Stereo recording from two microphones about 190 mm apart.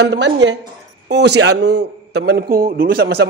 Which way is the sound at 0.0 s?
65° right (ahead or behind).